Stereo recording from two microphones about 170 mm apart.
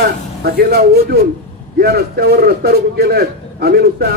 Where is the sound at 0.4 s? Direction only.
65° right (ahead or behind).